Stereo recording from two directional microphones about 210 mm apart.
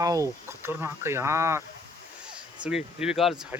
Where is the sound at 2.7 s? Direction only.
5° right (ahead or behind).